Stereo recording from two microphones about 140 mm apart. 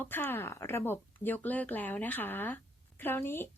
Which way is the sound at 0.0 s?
15° left (ahead or behind).